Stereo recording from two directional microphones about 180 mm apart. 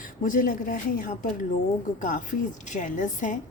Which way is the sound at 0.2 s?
50° left (ahead or behind).